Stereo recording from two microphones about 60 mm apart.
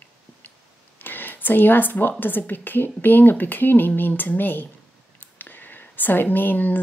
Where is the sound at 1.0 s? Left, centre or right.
Left.